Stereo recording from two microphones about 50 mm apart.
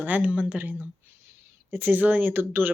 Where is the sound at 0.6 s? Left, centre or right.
Right.